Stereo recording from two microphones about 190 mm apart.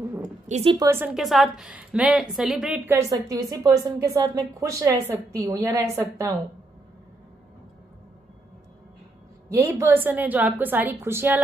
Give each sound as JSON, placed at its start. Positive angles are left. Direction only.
{"t": 0.5, "sound": "speech", "side_deg": -35}
{"t": 0.7, "sound": "a woman's voice", "side_deg": -15}
{"t": 9.5, "sound": "a woman's voice", "side_deg": -15}